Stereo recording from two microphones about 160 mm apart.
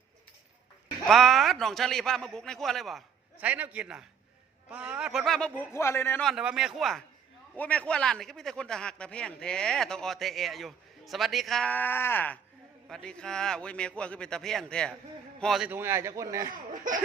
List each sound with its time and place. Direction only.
1.0 s a man's voice: centre (ahead or behind)
3.3 s a man's voice: 10° right (ahead or behind)
5.7 s a man's voice: 15° left (ahead or behind)
6.2 s a man's voice: 5° right (ahead or behind)
15.7 s a man's voice: 15° right (ahead or behind)